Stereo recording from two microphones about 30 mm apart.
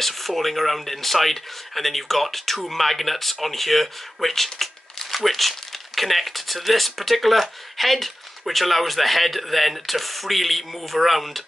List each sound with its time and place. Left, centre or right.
0.0 s speech: centre